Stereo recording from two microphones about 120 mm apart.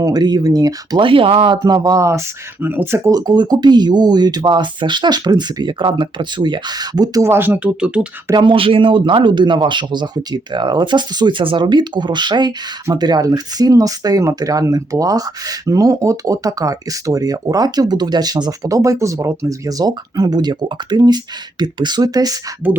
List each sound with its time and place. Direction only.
0.0 s speech: 35° right (ahead or behind)
1.5 s speech: 30° right (ahead or behind)
3.1 s speech: 35° right (ahead or behind); by 8.0 s 10° right (ahead or behind)
8.3 s speech: 40° right (ahead or behind)